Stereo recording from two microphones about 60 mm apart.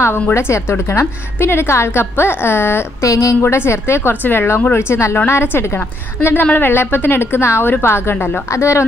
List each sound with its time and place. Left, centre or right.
0.0 s a woman's voice: left
3.0 s a woman's voice: left
3.4 s a woman's voice: left